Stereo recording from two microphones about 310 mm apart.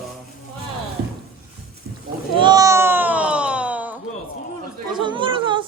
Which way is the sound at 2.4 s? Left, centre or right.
Centre.